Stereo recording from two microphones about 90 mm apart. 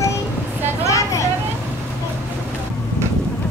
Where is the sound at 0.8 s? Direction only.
35° left (ahead or behind).